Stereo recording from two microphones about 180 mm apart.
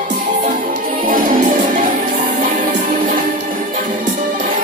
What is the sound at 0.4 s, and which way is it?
Music, 45° right (ahead or behind).